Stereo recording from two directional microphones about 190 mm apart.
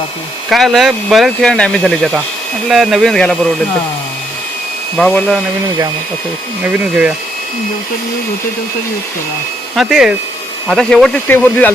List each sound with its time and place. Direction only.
0.5 s speech: centre (ahead or behind)
4.9 s speech: 5° left (ahead or behind)
6.6 s speech: 5° right (ahead or behind)
9.7 s speech: 5° right (ahead or behind)